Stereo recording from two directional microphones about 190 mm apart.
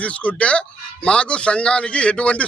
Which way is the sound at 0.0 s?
5° left (ahead or behind).